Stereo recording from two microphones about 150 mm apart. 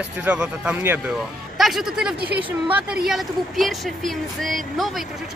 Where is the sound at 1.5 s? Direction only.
Centre (ahead or behind).